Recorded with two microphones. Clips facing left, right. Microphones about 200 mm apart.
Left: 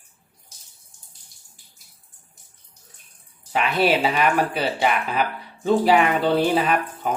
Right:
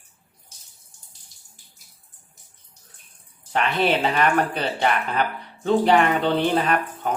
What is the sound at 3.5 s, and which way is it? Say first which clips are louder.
Speech: left 1 dB; 5° left (ahead or behind).